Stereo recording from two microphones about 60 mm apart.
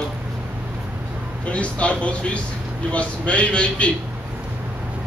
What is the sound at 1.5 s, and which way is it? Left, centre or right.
A man's voice, left.